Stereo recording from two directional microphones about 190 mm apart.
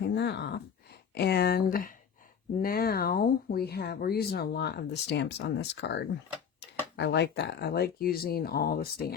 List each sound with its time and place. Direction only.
0.0 s speech: 65° left (ahead or behind)